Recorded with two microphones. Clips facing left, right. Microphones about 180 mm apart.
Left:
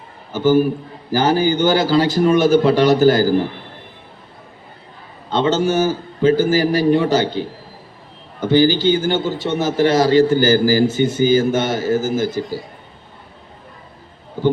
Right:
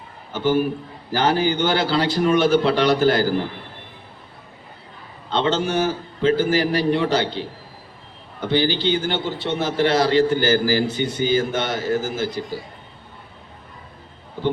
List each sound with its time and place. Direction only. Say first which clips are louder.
0.3 s a man's voice: left 5 dB; 40° left (ahead or behind)
5.3 s a man's voice: left 4 dB; 40° left (ahead or behind)